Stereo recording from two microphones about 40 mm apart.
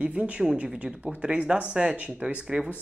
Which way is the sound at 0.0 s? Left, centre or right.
Right.